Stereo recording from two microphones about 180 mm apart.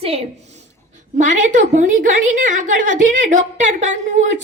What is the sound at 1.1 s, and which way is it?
A woman's voice, 45° right (ahead or behind).